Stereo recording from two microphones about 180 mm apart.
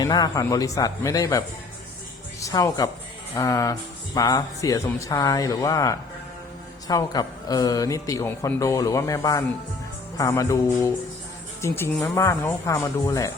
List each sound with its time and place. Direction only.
0.0 s speech: 20° left (ahead or behind)